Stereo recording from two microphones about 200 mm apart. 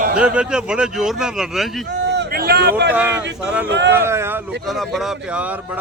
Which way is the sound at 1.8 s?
60° right (ahead or behind).